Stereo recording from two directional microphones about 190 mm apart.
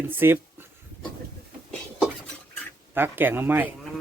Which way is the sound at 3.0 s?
10° right (ahead or behind).